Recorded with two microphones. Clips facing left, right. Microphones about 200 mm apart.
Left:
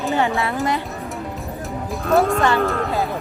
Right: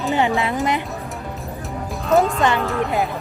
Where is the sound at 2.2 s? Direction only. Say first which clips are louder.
Left 1 dB; 20° right (ahead or behind).